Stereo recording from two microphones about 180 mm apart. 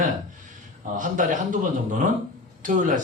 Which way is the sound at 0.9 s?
45° right (ahead or behind).